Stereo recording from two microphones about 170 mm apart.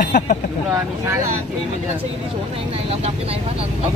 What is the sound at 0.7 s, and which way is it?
Speech, 15° right (ahead or behind).